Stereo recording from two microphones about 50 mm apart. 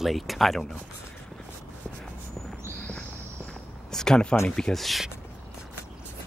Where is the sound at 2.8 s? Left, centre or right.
Left.